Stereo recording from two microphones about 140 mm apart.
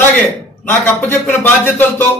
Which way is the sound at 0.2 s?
15° left (ahead or behind).